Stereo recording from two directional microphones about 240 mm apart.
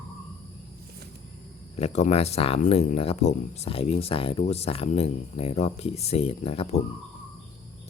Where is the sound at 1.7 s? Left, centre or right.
Left.